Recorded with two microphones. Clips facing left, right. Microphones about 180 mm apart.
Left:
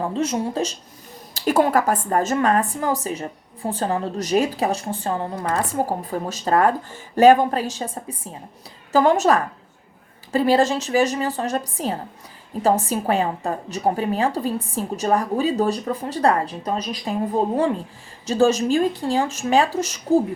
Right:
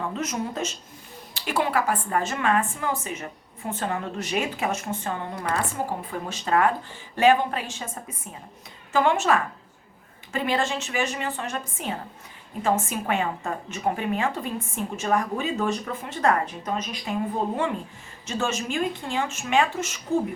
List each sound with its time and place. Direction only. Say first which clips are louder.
0.0 s a woman's voice: left 6 dB; 30° left (ahead or behind)
1.3 s a woman's voice: left 7 dB; 40° left (ahead or behind)
18.3 s a woman's voice: left 10 dB; 35° left (ahead or behind)